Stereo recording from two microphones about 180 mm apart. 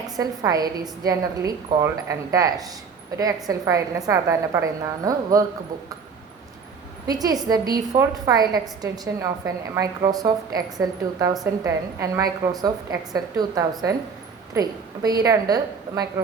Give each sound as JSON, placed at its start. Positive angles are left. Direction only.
{"t": 0.2, "sound": "a woman's voice", "side_deg": -20}
{"t": 7.1, "sound": "a woman's voice", "side_deg": -20}